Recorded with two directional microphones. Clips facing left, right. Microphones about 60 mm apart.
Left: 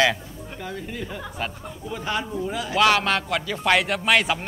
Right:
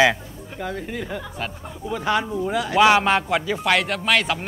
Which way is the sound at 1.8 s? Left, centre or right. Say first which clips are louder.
Right 5 dB; right.